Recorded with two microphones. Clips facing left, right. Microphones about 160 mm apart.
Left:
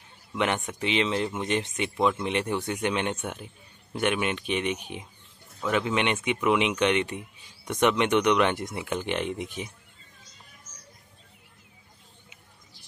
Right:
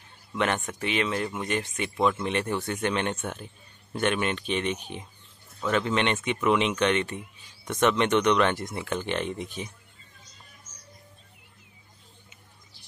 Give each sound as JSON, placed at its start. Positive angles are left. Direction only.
{"t": 0.3, "sound": "speech", "side_deg": 15}